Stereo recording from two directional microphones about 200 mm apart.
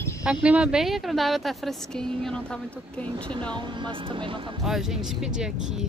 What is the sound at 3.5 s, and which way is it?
Speech, 25° right (ahead or behind).